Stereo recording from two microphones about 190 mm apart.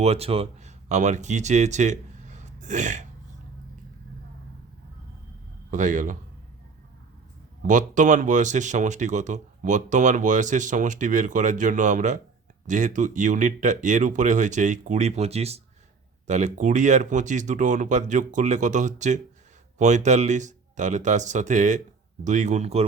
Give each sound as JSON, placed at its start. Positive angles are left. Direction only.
{"t": 0.0, "sound": "speech", "side_deg": -30}
{"t": 5.7, "sound": "speech", "side_deg": -40}
{"t": 7.7, "sound": "speech", "side_deg": -40}